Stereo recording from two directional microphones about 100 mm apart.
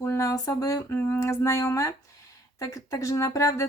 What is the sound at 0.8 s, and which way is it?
Speech, 25° left (ahead or behind).